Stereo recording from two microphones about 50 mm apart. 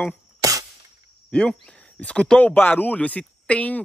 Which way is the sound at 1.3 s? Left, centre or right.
Left.